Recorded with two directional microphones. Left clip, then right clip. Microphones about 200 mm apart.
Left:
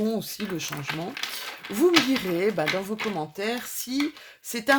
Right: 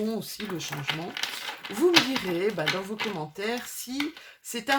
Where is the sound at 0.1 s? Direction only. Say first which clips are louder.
Left 3 dB; 30° left (ahead or behind).